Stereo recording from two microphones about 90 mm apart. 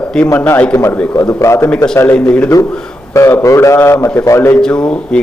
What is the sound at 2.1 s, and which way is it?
Speech, 10° left (ahead or behind).